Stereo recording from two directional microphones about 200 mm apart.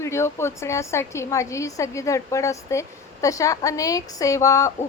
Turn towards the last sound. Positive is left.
turn(degrees=15)  # may be behind; listen again after turning